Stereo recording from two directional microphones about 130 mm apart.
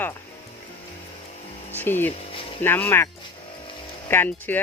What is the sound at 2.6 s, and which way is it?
Speech, 15° left (ahead or behind).